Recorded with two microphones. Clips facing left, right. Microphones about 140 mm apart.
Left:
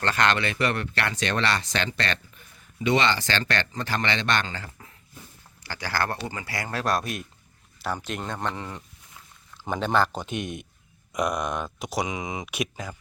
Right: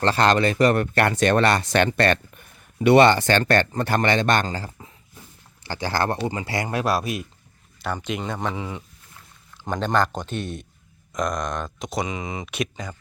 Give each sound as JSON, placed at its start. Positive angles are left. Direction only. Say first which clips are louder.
{"t": 0.0, "sound": "speech", "louder": "right 5 dB", "side_deg": -35}
{"t": 5.6, "sound": "speech", "louder": "right 5 dB", "side_deg": -25}